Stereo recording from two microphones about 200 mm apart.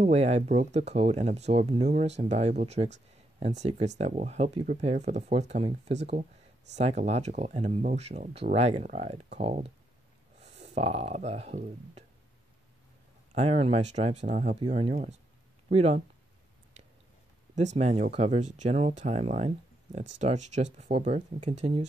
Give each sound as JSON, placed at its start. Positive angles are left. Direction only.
{"t": 0.0, "sound": "speech", "side_deg": -30}
{"t": 13.3, "sound": "speech", "side_deg": -30}
{"t": 17.7, "sound": "speech", "side_deg": -35}